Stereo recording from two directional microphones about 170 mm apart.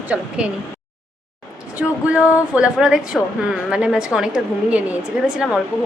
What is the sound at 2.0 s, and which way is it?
A woman's voice, 5° right (ahead or behind).